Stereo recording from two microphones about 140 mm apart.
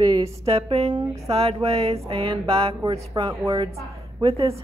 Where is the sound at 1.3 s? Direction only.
45° right (ahead or behind).